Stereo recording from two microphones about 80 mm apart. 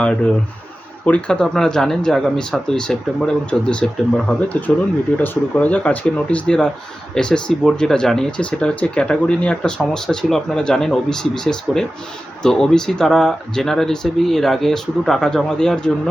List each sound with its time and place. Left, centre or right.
0.0 s speech: centre